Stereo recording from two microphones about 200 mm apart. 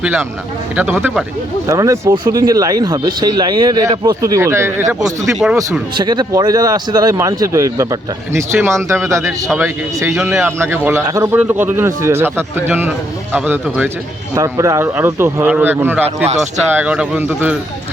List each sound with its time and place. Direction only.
0.0 s speech: 5° right (ahead or behind)
5.2 s speech: centre (ahead or behind)
6.0 s speech: 20° right (ahead or behind)
16.0 s speech: 35° right (ahead or behind)
16.7 s speech: 5° right (ahead or behind)